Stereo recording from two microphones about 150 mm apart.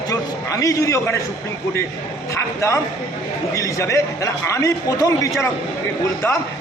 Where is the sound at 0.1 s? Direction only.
20° left (ahead or behind).